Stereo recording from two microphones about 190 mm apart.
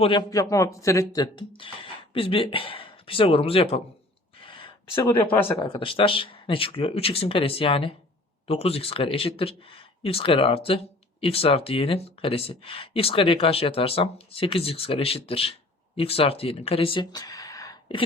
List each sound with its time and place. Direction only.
0.0 s speech: 25° left (ahead or behind)
4.4 s a sound: 25° left (ahead or behind)
5.6 s speech: 25° left (ahead or behind)